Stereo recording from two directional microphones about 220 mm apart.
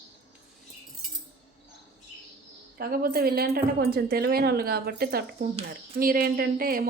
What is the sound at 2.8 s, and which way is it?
A woman's voice, 45° right (ahead or behind).